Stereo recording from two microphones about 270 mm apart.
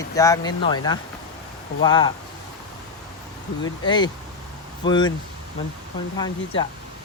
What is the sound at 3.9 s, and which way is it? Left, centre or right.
Speech, centre.